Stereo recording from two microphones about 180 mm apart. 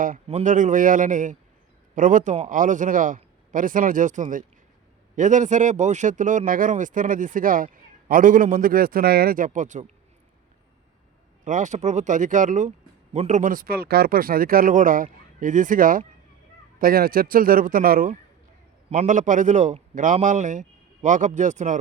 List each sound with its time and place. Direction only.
0.0 s speech: 45° right (ahead or behind)
11.4 s speech: 45° right (ahead or behind)